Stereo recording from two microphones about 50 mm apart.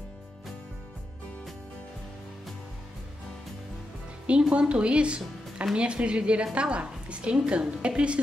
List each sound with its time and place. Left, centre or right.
4.3 s a woman's voice: centre